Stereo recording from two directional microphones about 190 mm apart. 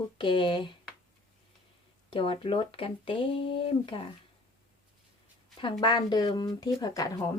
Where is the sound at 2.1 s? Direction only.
30° left (ahead or behind).